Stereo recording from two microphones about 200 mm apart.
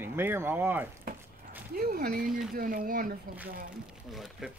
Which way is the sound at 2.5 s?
45° right (ahead or behind).